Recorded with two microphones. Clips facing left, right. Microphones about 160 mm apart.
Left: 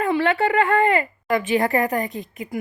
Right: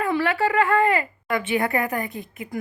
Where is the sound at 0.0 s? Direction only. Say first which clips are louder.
Left 2 dB; 25° left (ahead or behind).